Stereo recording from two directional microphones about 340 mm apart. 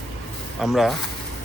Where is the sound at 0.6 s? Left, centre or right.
Centre.